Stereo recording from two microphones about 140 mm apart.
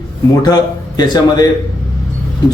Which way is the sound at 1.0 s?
30° left (ahead or behind).